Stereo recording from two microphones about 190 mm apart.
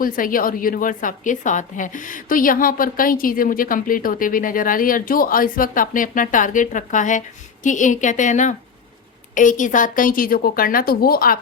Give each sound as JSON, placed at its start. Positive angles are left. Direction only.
{"t": 0.0, "sound": "a woman's voice", "side_deg": 45}